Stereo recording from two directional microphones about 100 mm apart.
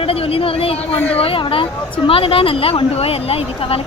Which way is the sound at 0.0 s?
70° left (ahead or behind).